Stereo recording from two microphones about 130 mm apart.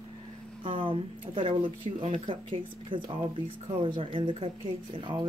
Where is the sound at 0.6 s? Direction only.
40° right (ahead or behind).